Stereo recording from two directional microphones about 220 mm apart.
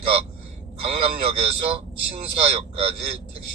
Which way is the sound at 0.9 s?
25° right (ahead or behind).